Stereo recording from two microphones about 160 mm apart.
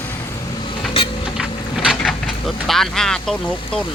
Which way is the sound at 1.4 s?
5° right (ahead or behind).